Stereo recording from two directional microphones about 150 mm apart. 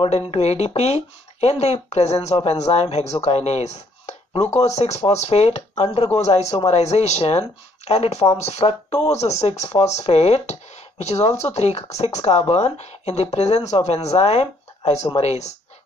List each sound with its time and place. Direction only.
0.0 s speech: 45° left (ahead or behind)
2.7 s chopping: 45° left (ahead or behind)
4.6 s speech: 45° left (ahead or behind)